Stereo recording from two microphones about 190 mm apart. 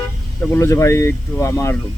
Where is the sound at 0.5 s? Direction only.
15° left (ahead or behind).